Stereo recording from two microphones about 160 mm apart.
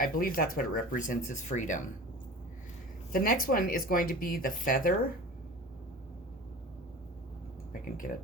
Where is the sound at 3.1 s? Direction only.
60° left (ahead or behind).